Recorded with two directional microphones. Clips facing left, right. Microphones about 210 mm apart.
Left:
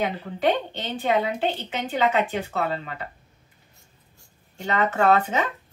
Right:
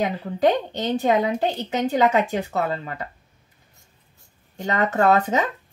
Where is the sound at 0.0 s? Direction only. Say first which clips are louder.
Right 3 dB; 40° right (ahead or behind).